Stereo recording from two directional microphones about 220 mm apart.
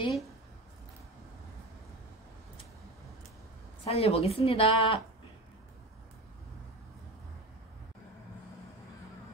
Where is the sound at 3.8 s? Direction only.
25° left (ahead or behind).